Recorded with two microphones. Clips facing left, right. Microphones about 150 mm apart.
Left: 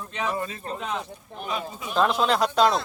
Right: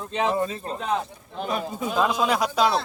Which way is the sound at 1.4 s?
60° right (ahead or behind).